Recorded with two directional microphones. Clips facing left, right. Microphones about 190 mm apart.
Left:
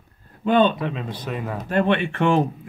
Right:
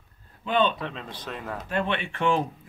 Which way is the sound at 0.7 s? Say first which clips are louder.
Left 7 dB; 10° left (ahead or behind).